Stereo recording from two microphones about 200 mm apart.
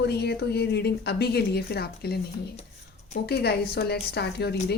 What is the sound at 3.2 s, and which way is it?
A woman's voice, 55° left (ahead or behind).